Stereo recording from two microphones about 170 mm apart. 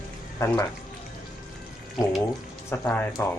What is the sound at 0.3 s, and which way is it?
Speech, 15° left (ahead or behind).